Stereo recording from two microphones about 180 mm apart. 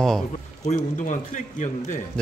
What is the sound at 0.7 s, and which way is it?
Speech, 45° left (ahead or behind).